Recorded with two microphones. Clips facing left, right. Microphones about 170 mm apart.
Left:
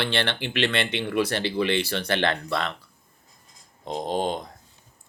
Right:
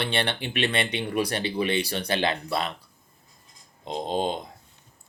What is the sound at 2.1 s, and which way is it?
Speech, 10° right (ahead or behind).